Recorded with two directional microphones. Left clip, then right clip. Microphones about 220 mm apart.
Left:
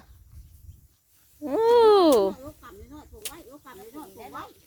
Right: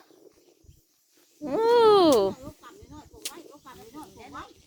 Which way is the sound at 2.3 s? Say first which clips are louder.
Left 2 dB; 45° left (ahead or behind).